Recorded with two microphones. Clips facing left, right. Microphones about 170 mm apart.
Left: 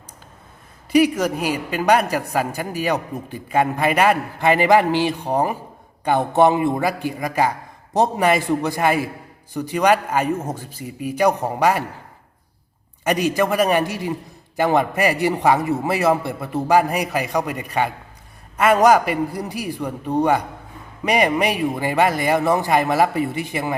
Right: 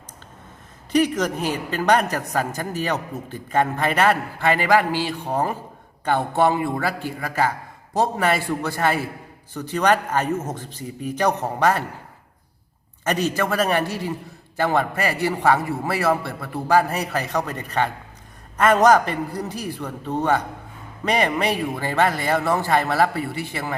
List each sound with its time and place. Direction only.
0.9 s a man's voice: 10° left (ahead or behind)
13.1 s a man's voice: 15° left (ahead or behind)